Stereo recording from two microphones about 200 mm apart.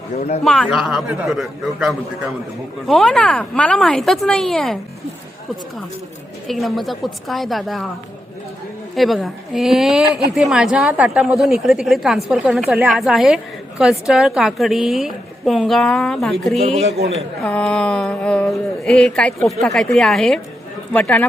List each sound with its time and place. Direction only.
0.2 s a man's voice: 35° left (ahead or behind)
0.4 s a woman's voice: centre (ahead or behind)
6.5 s a woman's voice: centre (ahead or behind)
9.0 s a woman's voice: centre (ahead or behind)
16.6 s speech: 30° right (ahead or behind)
17.4 s a woman's voice: 5° left (ahead or behind)